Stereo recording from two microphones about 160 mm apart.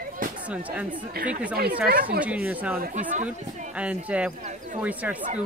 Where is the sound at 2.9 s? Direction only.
50° right (ahead or behind).